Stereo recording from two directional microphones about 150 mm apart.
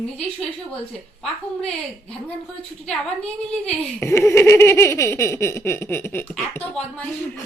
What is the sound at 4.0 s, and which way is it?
Giggle, 15° left (ahead or behind).